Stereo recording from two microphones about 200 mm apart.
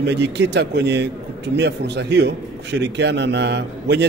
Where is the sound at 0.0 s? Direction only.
60° right (ahead or behind).